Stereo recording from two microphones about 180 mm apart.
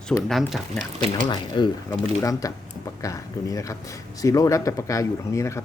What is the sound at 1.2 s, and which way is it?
Speech, 25° left (ahead or behind).